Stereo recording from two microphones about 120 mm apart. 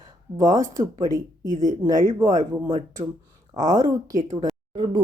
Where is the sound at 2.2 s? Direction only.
30° right (ahead or behind).